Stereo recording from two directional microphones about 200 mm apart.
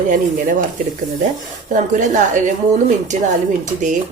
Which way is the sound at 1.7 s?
40° right (ahead or behind).